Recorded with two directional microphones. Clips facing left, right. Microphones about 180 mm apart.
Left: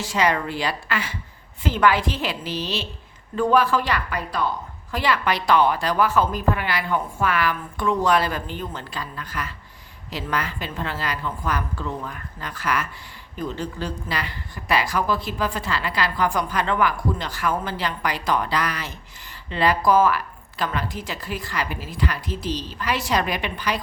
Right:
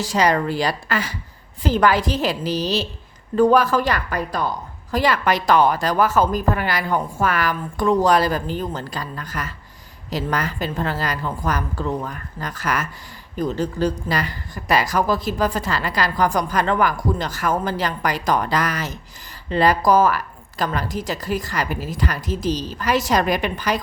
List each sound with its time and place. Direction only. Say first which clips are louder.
0.0 s a woman's voice: right 3 dB; 40° right (ahead or behind)